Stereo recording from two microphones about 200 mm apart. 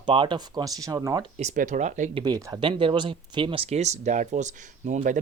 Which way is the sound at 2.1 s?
20° right (ahead or behind).